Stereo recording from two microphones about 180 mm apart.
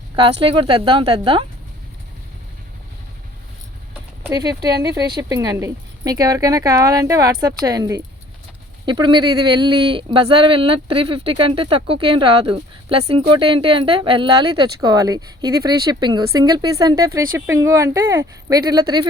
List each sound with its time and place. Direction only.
0.2 s speech: 30° right (ahead or behind)
4.2 s speech: 20° right (ahead or behind)